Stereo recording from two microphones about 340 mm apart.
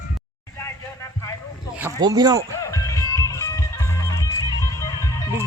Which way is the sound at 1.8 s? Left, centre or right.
Centre.